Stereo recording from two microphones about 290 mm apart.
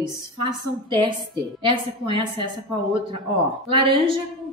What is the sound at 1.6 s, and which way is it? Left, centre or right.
Speech, centre.